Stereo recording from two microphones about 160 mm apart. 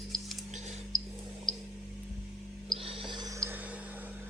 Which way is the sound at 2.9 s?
30° right (ahead or behind).